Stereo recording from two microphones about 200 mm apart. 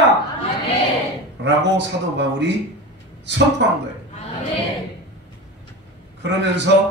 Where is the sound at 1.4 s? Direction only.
60° right (ahead or behind).